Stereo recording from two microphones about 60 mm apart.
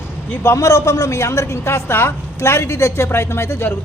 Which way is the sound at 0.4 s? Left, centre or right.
Left.